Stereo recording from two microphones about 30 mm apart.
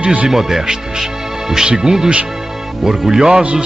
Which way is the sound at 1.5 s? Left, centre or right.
Right.